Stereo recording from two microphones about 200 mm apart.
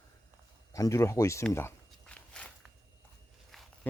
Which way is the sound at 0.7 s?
15° left (ahead or behind).